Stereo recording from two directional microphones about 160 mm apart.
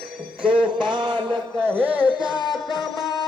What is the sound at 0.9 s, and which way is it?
Music, 30° right (ahead or behind).